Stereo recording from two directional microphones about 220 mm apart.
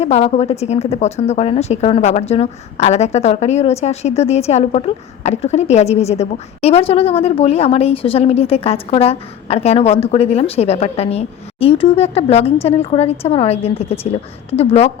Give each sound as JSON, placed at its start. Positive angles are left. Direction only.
{"t": 0.0, "sound": "a woman's voice", "side_deg": 30}